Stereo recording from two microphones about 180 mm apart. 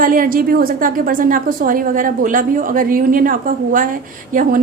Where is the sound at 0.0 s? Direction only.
50° right (ahead or behind).